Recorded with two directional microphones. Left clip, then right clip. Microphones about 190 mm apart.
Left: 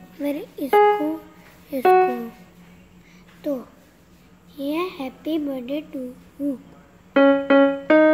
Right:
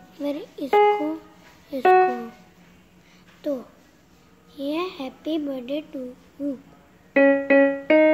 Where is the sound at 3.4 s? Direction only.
Centre (ahead or behind).